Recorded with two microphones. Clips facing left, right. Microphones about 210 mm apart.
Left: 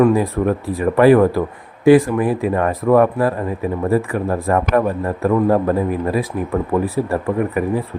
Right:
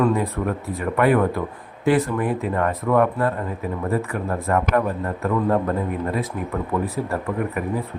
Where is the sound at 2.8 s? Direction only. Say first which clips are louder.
Left 6 dB; 30° left (ahead or behind).